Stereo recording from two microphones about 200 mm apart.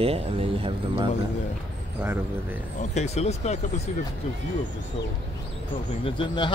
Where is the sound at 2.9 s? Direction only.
35° left (ahead or behind).